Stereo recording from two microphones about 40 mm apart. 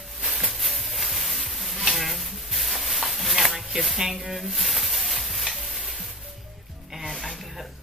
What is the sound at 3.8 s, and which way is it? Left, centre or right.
Stir, centre.